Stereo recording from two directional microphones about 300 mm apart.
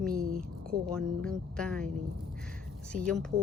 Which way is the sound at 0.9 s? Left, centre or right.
Centre.